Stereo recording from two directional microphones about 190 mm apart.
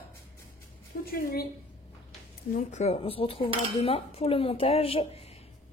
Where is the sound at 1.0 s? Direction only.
55° left (ahead or behind).